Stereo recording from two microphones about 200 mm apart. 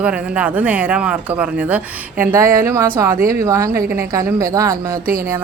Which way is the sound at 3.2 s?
45° right (ahead or behind).